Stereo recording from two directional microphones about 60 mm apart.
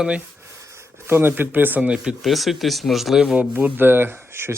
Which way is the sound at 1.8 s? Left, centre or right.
Centre.